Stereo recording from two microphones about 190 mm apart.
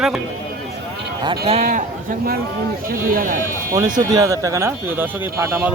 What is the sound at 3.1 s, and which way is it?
Speech, 45° right (ahead or behind).